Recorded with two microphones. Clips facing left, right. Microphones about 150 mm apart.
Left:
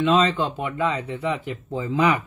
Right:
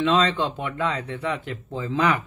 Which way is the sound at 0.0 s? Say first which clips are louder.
Left 1 dB; 5° left (ahead or behind).